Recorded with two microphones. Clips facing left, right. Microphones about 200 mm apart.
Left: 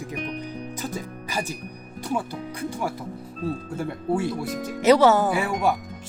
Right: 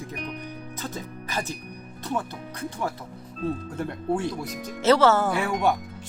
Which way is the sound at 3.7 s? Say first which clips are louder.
Left 2 dB; 5° left (ahead or behind).